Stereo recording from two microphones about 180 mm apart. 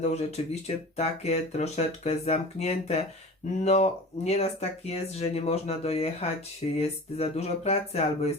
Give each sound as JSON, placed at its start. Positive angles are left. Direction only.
{"t": 0.0, "sound": "speech", "side_deg": 35}